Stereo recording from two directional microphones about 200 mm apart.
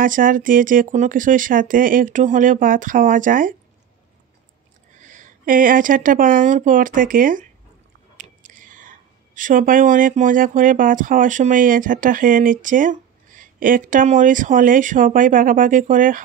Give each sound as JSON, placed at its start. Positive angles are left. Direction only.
{"t": 0.0, "sound": "speech", "side_deg": -45}
{"t": 4.9, "sound": "speech", "side_deg": -40}